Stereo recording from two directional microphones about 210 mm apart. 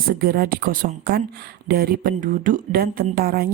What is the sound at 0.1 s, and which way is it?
Speech, 45° right (ahead or behind).